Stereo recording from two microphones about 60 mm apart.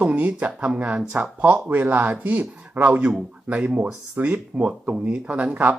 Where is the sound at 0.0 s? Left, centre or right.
Right.